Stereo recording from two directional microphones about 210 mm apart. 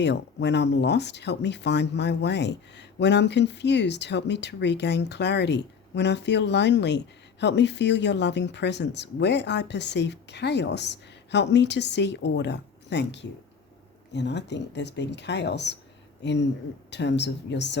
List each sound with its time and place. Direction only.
0.0 s speech: 55° left (ahead or behind)